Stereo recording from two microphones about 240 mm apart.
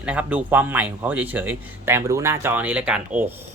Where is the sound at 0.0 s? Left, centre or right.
Centre.